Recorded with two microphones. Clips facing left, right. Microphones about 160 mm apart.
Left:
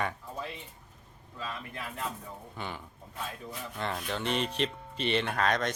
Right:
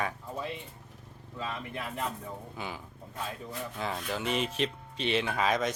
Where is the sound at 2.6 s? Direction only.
5° right (ahead or behind).